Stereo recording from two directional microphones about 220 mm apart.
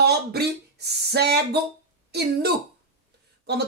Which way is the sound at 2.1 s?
45° right (ahead or behind).